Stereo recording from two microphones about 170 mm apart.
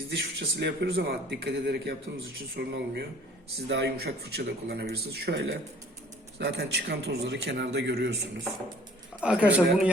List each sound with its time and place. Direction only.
0.1 s a man's voice: 85° right
9.2 s a man's voice: 5° right (ahead or behind)